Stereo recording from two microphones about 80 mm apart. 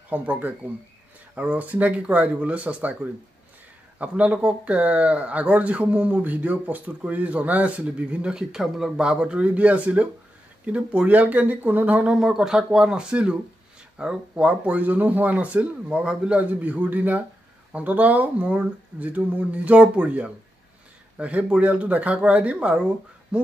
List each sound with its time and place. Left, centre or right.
0.1 s speech: right